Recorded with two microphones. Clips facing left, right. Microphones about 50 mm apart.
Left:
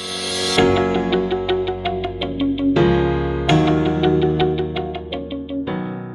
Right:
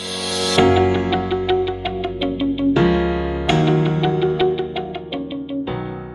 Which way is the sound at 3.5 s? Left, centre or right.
Centre.